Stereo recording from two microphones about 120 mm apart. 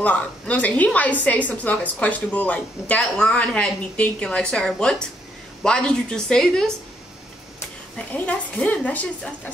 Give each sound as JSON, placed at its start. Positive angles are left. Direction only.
{"t": 0.0, "sound": "a woman's voice", "side_deg": 10}
{"t": 8.1, "sound": "a woman's voice", "side_deg": 10}